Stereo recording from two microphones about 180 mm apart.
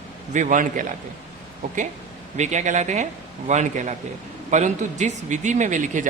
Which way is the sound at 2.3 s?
40° right (ahead or behind).